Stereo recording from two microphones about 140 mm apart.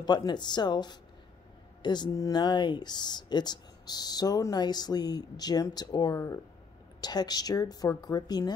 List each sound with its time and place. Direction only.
0.0 s speech: 30° left (ahead or behind)